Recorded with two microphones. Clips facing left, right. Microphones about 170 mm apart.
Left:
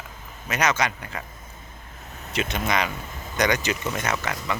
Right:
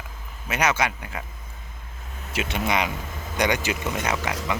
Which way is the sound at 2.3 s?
10° right (ahead or behind).